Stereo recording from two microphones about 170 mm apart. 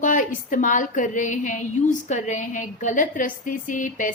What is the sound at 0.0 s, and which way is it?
A woman's voice, 50° left (ahead or behind).